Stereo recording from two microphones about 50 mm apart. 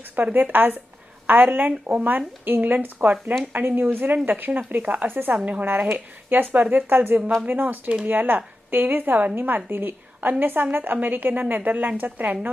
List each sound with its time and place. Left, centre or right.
0.3 s a woman's voice: right
5.9 s a woman's voice: right